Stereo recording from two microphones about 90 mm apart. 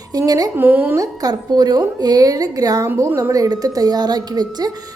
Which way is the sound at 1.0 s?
45° right (ahead or behind).